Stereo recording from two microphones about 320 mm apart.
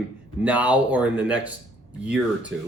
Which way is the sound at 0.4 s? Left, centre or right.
Centre.